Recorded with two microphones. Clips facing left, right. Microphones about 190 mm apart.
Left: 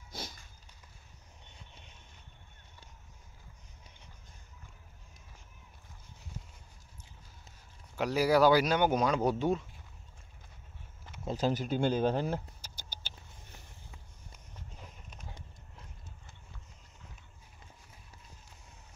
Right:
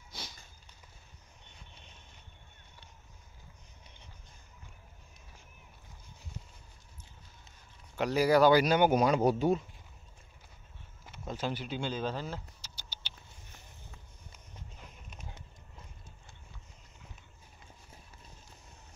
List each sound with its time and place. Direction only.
0.1 s a sound: 50° left (ahead or behind)
7.9 s speech: 5° left (ahead or behind)
8.7 s speech: 10° right (ahead or behind)
11.2 s speech: 35° left (ahead or behind)